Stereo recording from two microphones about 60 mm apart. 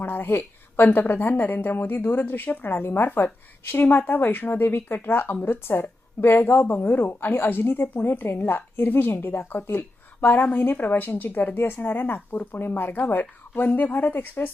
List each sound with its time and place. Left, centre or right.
0.0 s speech: left